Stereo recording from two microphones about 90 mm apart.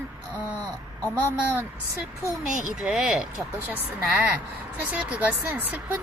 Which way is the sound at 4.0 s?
15° right (ahead or behind).